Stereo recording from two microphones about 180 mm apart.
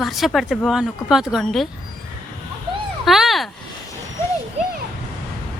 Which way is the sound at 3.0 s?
Centre (ahead or behind).